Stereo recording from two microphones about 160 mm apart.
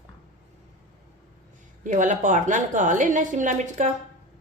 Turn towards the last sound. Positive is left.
turn(degrees=-50)  # may be behind; listen again after turning